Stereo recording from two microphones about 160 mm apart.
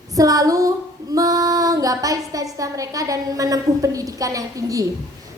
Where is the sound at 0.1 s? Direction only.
20° right (ahead or behind).